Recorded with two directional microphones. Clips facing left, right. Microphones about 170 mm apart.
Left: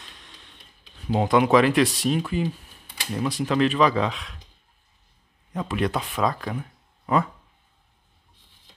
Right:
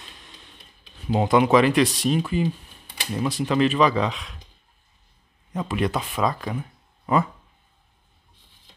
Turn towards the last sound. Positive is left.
turn(degrees=-5)  # may be behind; listen again after turning